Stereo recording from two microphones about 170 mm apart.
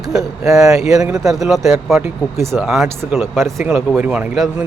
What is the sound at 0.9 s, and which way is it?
Speech, 20° right (ahead or behind).